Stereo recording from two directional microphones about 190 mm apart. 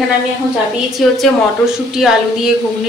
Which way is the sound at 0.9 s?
Centre (ahead or behind).